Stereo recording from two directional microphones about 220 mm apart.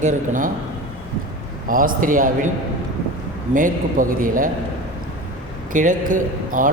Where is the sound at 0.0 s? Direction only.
35° right (ahead or behind).